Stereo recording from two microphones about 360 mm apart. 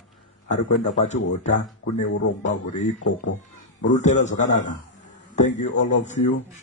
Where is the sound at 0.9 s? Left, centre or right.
Centre.